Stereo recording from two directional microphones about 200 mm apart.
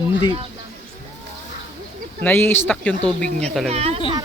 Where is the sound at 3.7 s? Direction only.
30° right (ahead or behind).